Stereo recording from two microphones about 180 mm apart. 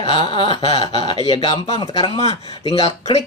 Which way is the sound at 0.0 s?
30° left (ahead or behind).